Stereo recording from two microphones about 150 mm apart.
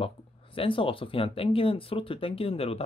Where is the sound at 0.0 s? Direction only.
35° left (ahead or behind).